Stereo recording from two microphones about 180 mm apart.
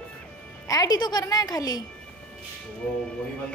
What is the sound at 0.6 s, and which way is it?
A woman's voice, 20° left (ahead or behind).